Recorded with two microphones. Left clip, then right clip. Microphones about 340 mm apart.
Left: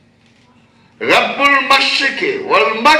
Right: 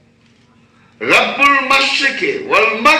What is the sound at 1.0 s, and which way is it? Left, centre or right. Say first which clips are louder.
A man's voice: right 1 dB; left.